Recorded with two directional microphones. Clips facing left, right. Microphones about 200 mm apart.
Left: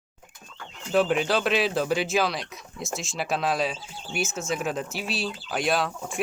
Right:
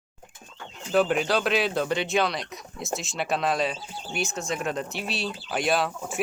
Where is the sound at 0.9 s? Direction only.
Centre (ahead or behind).